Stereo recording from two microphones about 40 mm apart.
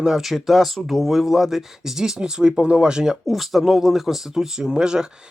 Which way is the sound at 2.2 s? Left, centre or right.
Right.